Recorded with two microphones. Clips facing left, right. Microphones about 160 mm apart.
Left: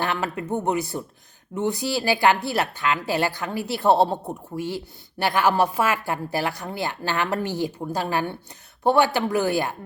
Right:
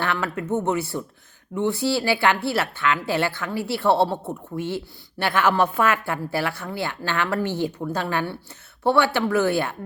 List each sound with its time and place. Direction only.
0.0 s a woman's voice: 15° left (ahead or behind)